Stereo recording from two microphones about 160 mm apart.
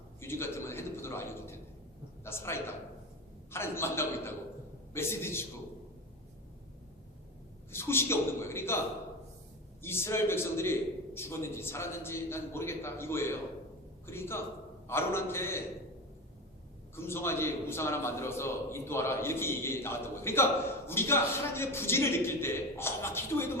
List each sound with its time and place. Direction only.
0.2 s a sound: 15° left (ahead or behind)
2.2 s a woman's voice: 15° left (ahead or behind)
7.7 s a man's voice: 15° left (ahead or behind)
9.8 s a man's voice: 15° left (ahead or behind)
16.9 s a man's voice: 15° left (ahead or behind)